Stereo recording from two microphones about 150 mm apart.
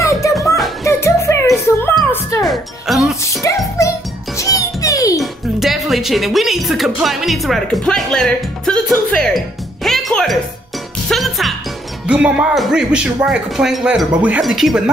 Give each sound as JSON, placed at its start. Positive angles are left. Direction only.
{"t": 0.0, "sound": "music", "side_deg": 20}
{"t": 2.4, "sound": "music", "side_deg": 0}
{"t": 3.4, "sound": "music", "side_deg": 20}
{"t": 5.2, "sound": "music", "side_deg": 0}
{"t": 7.0, "sound": "speech", "side_deg": 0}
{"t": 9.8, "sound": "music", "side_deg": 0}
{"t": 12.1, "sound": "speech", "side_deg": -5}